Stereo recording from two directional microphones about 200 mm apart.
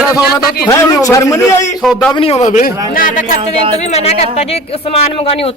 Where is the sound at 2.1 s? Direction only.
30° left (ahead or behind).